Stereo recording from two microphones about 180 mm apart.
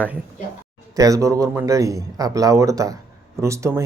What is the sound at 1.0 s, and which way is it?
Speech, 20° right (ahead or behind).